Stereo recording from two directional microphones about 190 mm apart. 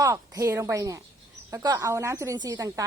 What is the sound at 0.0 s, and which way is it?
A woman's voice, 15° right (ahead or behind).